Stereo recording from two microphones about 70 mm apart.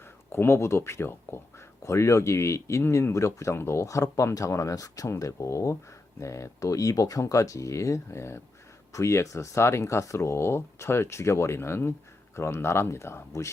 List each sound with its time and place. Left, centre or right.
0.3 s speech: left